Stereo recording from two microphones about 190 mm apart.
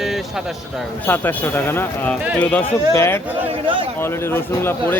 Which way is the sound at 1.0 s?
10° left (ahead or behind).